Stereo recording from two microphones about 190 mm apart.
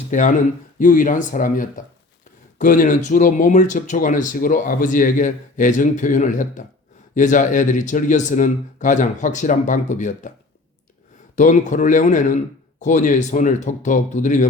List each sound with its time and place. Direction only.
0.1 s speech: 40° left (ahead or behind)
11.3 s speech: 40° left (ahead or behind)